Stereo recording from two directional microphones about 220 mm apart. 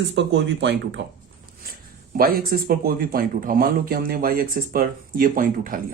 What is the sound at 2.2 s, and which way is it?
Speech, 40° right (ahead or behind).